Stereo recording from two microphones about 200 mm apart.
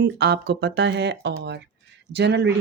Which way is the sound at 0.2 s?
55° right (ahead or behind).